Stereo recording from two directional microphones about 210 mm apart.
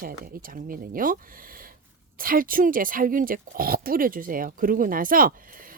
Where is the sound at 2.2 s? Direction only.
40° right (ahead or behind).